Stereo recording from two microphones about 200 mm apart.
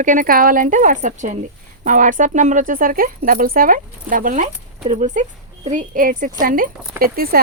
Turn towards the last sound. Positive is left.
turn(degrees=-50)  # may be behind; listen again after turning